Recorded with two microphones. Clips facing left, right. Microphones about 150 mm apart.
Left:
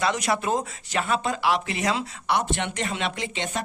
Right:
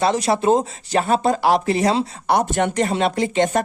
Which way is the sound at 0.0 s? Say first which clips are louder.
Right 7 dB; 30° right (ahead or behind).